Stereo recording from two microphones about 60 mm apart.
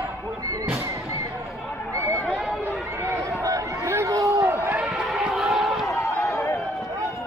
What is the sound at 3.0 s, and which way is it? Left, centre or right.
Run, right.